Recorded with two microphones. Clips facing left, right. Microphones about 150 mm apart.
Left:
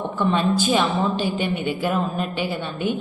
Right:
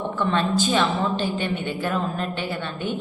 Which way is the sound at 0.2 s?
10° left (ahead or behind).